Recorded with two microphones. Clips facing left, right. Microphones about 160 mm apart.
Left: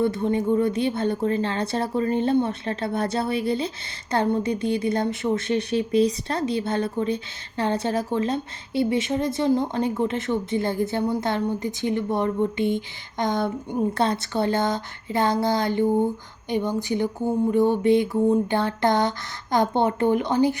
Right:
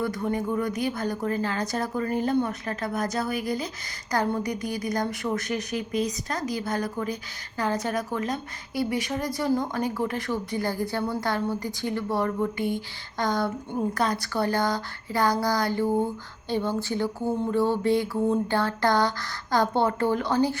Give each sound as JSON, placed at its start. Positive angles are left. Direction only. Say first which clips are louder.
{"t": 0.0, "sound": "a woman's voice", "louder": "left 5 dB", "side_deg": 25}